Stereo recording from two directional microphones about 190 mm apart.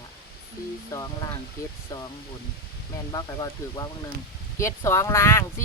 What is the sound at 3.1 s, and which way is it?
Speech, 20° left (ahead or behind).